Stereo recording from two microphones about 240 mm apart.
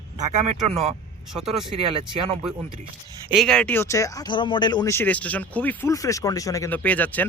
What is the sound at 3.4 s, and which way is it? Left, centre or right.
Speech, centre.